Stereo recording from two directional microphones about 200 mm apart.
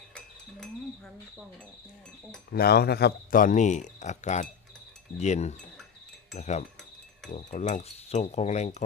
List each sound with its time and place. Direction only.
2.5 s speech: 50° left (ahead or behind); by 8.8 s 35° left (ahead or behind)